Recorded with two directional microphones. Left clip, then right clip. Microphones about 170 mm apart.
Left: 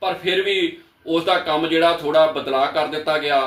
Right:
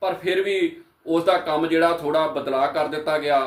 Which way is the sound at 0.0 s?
15° right (ahead or behind).